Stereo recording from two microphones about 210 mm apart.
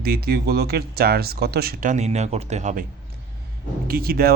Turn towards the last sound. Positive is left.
turn(degrees=-45)  # may be behind; listen again after turning